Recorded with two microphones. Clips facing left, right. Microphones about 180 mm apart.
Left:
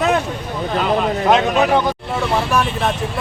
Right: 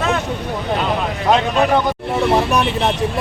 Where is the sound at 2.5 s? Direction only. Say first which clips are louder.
Right 1 dB; 20° right (ahead or behind).